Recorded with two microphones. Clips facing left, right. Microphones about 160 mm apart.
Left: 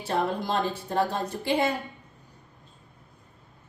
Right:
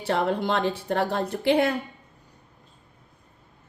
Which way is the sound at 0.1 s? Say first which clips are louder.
Right 3 dB; 70° right (ahead or behind).